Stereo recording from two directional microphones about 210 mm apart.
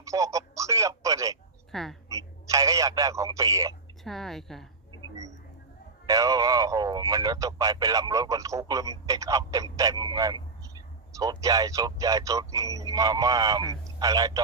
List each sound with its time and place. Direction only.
0.0 s speech: 15° right (ahead or behind)
1.7 s speech: centre (ahead or behind)
2.0 s a man's voice: 15° right (ahead or behind)
4.0 s speech: centre (ahead or behind)
6.1 s a man's voice: 15° right (ahead or behind)